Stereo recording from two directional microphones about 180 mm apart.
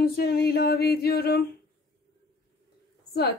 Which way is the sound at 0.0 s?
60° left (ahead or behind).